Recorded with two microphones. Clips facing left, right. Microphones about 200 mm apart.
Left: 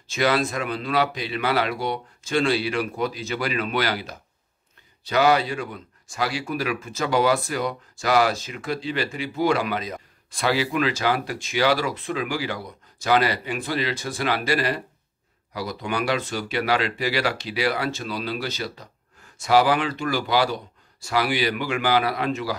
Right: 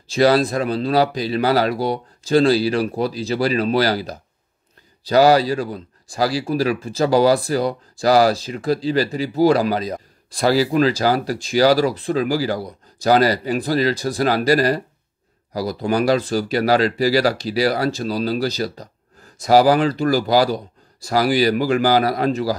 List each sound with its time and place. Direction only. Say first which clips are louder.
0.0 s speech: right 7 dB; 35° right (ahead or behind)